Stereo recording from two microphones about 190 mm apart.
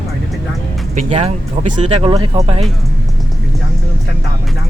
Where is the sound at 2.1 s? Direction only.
20° right (ahead or behind).